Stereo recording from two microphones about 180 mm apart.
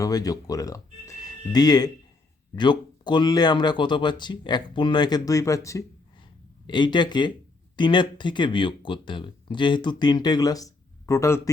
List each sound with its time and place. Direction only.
0.0 s speech: 20° left (ahead or behind)